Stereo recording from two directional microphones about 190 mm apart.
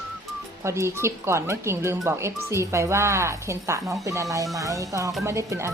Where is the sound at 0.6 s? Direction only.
15° right (ahead or behind).